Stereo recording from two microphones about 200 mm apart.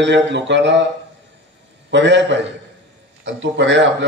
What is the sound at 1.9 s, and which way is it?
Speech, 60° right (ahead or behind).